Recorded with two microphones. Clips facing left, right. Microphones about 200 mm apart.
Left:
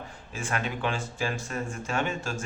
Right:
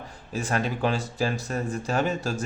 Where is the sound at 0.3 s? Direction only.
35° right (ahead or behind).